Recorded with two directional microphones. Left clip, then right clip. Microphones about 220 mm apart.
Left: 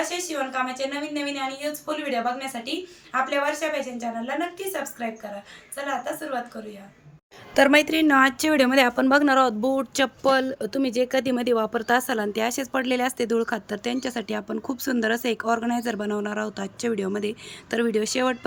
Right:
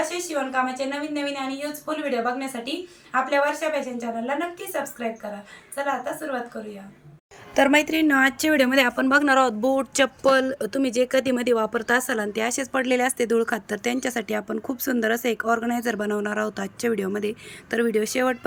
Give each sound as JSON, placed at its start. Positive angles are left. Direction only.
{"t": 0.3, "sound": "a woman's voice", "side_deg": 0}
{"t": 7.5, "sound": "a woman's voice", "side_deg": 0}